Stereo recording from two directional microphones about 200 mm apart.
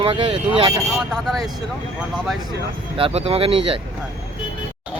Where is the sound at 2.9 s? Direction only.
30° right (ahead or behind).